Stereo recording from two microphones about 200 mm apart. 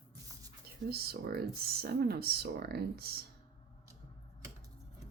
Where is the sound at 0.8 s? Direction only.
50° right (ahead or behind).